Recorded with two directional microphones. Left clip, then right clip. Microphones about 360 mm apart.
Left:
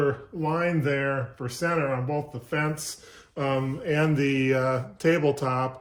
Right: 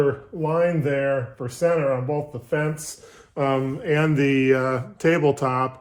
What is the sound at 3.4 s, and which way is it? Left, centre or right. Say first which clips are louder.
Speech: right 5 dB; centre.